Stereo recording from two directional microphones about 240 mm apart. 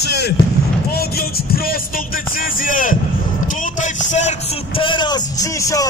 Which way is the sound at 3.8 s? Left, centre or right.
Left.